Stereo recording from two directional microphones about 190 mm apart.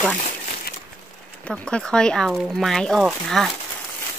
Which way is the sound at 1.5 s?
5° left (ahead or behind).